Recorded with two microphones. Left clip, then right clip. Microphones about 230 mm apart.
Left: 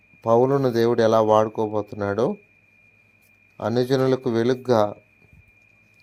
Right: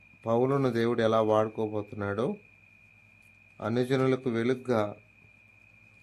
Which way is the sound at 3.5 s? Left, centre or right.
Centre.